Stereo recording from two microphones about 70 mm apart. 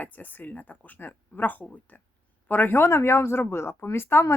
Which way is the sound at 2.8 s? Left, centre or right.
Left.